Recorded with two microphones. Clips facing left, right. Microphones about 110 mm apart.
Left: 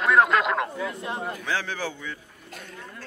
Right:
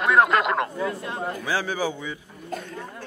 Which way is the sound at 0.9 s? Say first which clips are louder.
Right 2 dB; 20° left (ahead or behind).